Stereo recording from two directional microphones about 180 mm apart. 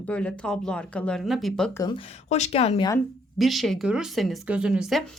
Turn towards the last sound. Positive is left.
turn(degrees=0)  # may be behind; listen again after turning